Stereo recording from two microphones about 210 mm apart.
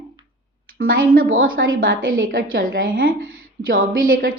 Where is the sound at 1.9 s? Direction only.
40° right (ahead or behind).